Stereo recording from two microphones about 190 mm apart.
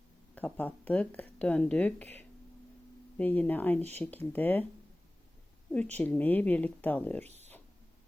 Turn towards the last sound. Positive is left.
turn(degrees=10)  # may be behind; listen again after turning